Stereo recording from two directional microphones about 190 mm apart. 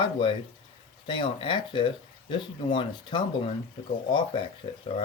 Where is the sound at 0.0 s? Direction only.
25° left (ahead or behind).